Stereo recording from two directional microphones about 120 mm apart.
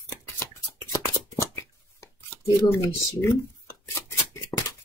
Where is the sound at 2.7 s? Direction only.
25° left (ahead or behind).